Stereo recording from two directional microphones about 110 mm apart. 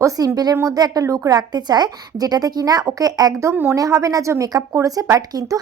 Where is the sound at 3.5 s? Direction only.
20° right (ahead or behind).